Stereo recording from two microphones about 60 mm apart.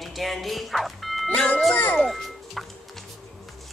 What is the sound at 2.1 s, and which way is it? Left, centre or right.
Music, centre.